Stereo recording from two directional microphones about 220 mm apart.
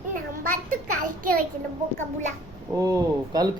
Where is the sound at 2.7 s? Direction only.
15° right (ahead or behind).